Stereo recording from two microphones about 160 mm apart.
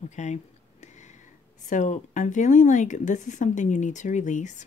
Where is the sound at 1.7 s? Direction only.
50° left (ahead or behind).